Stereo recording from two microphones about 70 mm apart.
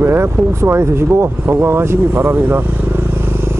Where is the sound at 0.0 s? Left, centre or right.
Right.